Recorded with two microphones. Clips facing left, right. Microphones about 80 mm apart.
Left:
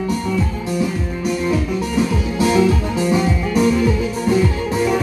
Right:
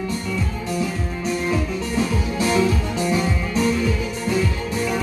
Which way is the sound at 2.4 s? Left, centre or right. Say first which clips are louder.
Left 4 dB; left.